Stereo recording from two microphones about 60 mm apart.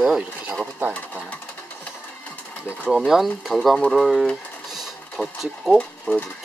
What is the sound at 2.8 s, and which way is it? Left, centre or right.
Speech, centre.